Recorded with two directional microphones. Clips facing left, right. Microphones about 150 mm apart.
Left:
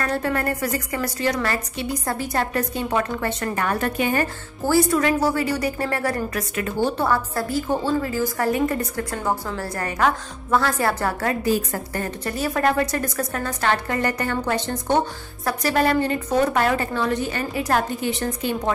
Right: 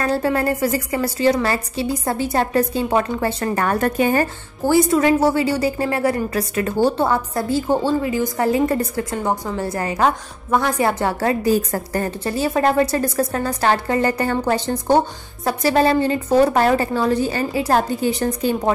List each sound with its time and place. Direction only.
0.0 s a woman's voice: 30° right (ahead or behind)
4.6 s a woman's voice: 20° right (ahead or behind)
7.1 s a woman's voice: 25° right (ahead or behind)
8.0 s a woman's voice: 20° right (ahead or behind)
11.5 s a woman's voice: 35° right (ahead or behind)